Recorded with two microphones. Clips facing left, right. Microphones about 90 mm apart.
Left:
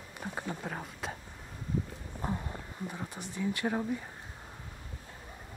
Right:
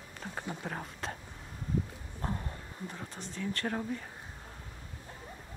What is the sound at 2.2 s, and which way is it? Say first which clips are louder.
Speech: left 2 dB; 10° left (ahead or behind).